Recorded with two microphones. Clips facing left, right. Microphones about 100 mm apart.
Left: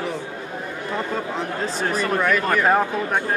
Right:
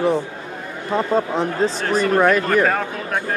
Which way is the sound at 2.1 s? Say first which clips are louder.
Right 6 dB; 40° right (ahead or behind).